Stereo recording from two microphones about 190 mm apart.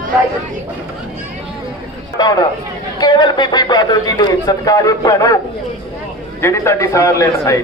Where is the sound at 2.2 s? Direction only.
20° left (ahead or behind).